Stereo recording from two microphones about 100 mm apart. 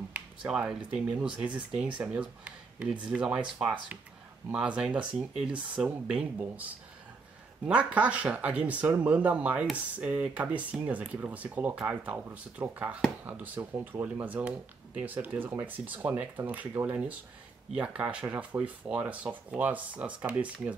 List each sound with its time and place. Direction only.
0.5 s speech: 10° right (ahead or behind)